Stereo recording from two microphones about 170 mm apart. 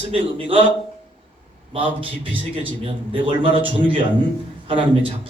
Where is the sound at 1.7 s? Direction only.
30° right (ahead or behind).